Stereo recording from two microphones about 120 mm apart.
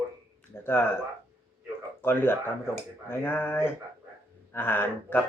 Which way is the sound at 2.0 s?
20° left (ahead or behind).